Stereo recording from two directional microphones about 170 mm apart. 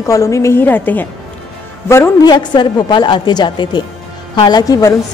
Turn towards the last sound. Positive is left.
turn(degrees=20)  # may be behind; listen again after turning